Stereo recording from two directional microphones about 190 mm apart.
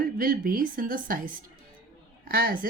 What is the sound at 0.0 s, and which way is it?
Speech, 50° right (ahead or behind).